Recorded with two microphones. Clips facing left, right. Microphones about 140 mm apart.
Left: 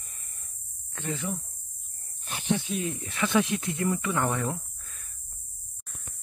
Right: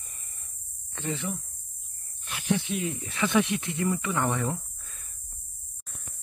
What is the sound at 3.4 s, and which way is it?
Speech, 25° right (ahead or behind).